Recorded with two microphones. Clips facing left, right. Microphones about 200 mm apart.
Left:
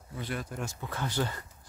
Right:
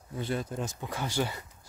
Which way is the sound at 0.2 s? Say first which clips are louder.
Right 4 dB; 25° right (ahead or behind).